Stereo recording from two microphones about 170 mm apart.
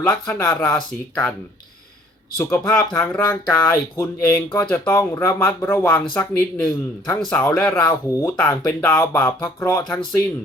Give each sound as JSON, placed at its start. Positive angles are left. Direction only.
{"t": 0.0, "sound": "speech", "side_deg": 15}
{"t": 2.4, "sound": "speech", "side_deg": 15}